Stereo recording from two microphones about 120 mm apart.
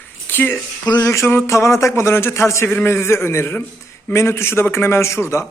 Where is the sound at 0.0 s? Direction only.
15° left (ahead or behind).